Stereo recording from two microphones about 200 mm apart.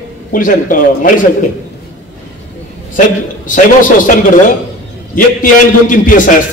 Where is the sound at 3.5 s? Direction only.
40° left (ahead or behind).